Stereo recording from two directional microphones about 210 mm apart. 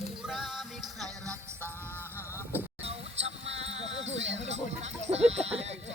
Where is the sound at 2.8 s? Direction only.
30° right (ahead or behind).